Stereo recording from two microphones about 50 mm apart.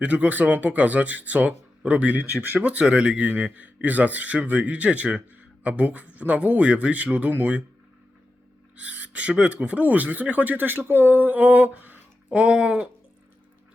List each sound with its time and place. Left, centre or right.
0.0 s speech: right
8.7 s speech: right
12.3 s speech: right